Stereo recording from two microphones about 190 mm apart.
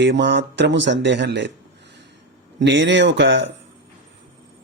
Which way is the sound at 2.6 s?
70° right (ahead or behind).